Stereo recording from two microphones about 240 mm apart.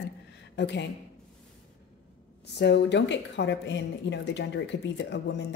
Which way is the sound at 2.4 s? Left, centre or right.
Left.